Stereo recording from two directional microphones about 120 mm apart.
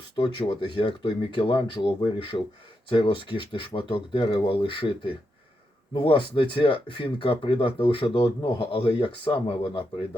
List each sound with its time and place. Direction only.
0.2 s speech: 40° left (ahead or behind)